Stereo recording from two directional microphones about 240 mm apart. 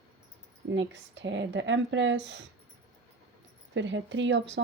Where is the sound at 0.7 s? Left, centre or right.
Right.